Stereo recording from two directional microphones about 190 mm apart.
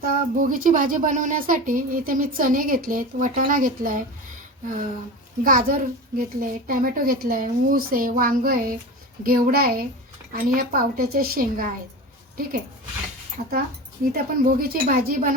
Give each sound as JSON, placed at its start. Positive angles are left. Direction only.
{"t": 0.0, "sound": "speech", "side_deg": -45}
{"t": 5.4, "sound": "speech", "side_deg": -45}
{"t": 14.0, "sound": "speech", "side_deg": -50}